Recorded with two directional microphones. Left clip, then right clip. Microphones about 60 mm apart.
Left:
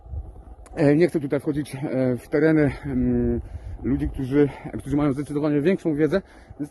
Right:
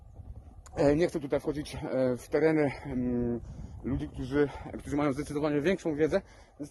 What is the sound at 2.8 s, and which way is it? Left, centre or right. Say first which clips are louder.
Speech: left 8 dB; left.